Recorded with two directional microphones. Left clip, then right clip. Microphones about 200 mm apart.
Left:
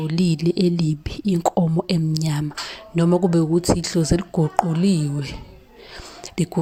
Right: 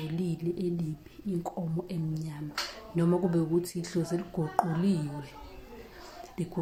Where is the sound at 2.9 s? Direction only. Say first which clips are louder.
Left 10 dB; 35° left (ahead or behind).